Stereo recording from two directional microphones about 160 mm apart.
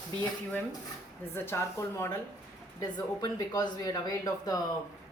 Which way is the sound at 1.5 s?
15° left (ahead or behind).